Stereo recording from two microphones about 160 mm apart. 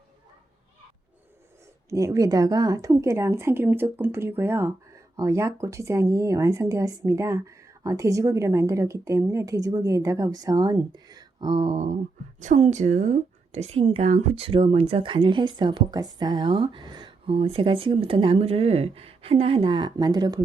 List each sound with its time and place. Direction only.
1.9 s a woman's voice: 20° right (ahead or behind)